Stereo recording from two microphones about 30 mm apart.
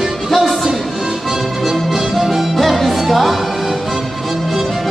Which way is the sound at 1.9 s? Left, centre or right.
Centre.